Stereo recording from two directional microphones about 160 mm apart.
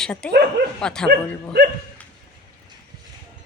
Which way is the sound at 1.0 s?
90° right.